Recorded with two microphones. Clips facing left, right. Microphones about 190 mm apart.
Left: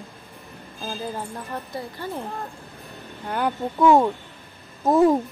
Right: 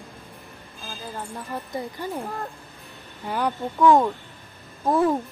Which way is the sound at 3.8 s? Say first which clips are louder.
Left 1 dB; 10° left (ahead or behind).